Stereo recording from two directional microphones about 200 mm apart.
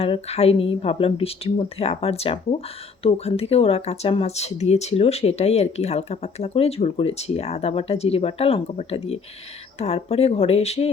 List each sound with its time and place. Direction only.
0.0 s speech: 30° left (ahead or behind)